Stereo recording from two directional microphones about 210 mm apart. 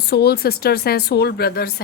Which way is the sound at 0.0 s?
50° left (ahead or behind).